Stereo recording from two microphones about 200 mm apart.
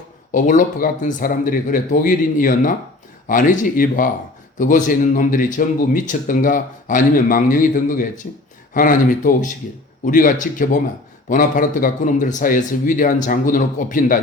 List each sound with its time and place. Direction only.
0.3 s a man's voice: 40° left (ahead or behind)